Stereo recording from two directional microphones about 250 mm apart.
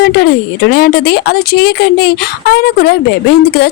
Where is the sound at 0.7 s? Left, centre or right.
Left.